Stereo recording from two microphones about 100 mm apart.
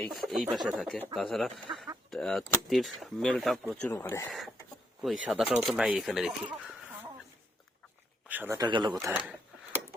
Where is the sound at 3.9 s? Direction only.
25° left (ahead or behind).